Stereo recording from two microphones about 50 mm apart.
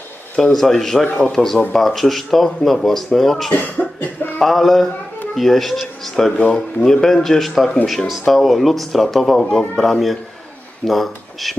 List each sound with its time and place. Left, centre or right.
0.4 s speech: centre
1.0 s speech: left
1.3 s speech: centre
3.5 s cough: left
4.4 s speech: centre